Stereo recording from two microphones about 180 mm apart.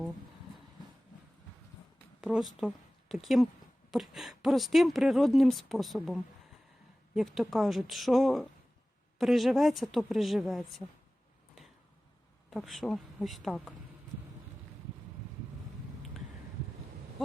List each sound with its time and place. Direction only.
2.2 s a woman's voice: centre (ahead or behind)
12.5 s speech: centre (ahead or behind)